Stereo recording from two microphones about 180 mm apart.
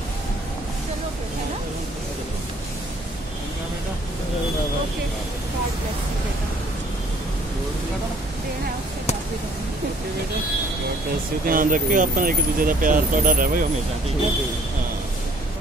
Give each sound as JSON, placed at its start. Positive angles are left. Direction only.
{"t": 11.4, "sound": "speech", "side_deg": -50}